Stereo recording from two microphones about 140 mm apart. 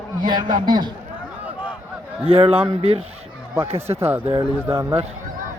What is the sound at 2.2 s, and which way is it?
Speech, 45° right (ahead or behind).